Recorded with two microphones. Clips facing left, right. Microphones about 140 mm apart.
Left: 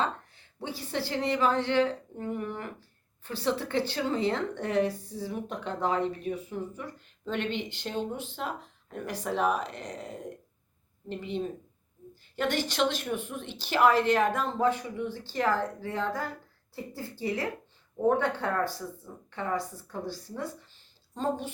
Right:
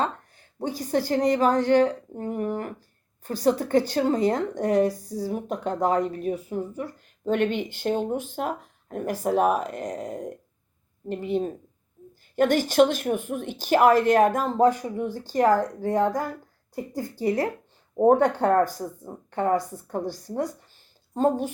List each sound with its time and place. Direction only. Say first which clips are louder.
0.0 s speech: right 3 dB; 45° right (ahead or behind)